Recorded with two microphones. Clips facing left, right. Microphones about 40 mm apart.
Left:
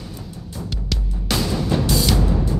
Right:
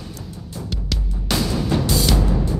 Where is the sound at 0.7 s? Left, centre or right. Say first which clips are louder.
Even; centre.